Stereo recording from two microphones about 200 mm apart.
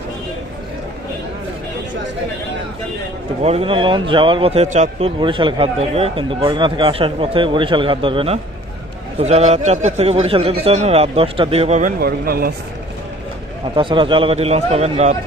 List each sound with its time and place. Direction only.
3.4 s a man's voice: 30° right (ahead or behind); by 12.5 s 50° right (ahead or behind)
13.7 s a man's voice: 25° right (ahead or behind)